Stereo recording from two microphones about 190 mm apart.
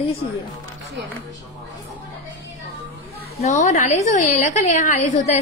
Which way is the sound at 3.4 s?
40° left (ahead or behind).